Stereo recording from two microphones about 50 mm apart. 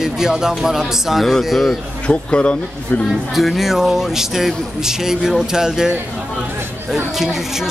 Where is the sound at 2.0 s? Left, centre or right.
Left.